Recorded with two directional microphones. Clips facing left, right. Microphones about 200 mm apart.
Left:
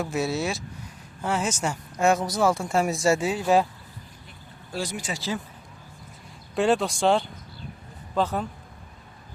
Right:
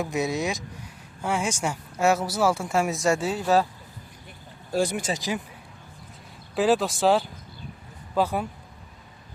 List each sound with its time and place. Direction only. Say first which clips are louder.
0.0 s speech: even; 15° right (ahead or behind); by 3.7 s 10° left (ahead or behind)
4.7 s speech: right 6 dB; 55° right (ahead or behind)
5.1 s speech: right 1 dB; 15° right (ahead or behind)
6.6 s speech: right 1 dB; centre (ahead or behind)